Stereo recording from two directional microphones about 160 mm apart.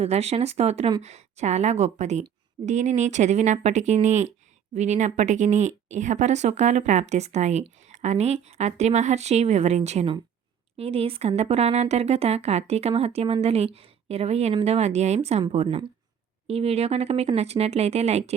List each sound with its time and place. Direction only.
0.0 s a woman's voice: 40° right (ahead or behind)